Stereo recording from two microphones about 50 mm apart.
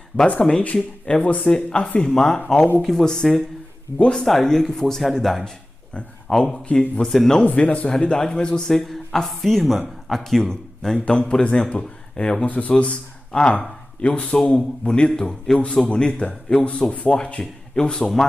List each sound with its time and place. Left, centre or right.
0.3 s a man's voice: left
4.3 s speech: centre
5.9 s a man's voice: centre
7.1 s a man's voice: centre
7.4 s a man's voice: left